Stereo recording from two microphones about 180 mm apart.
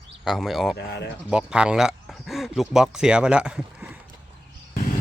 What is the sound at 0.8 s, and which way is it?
Speech, 65° left (ahead or behind).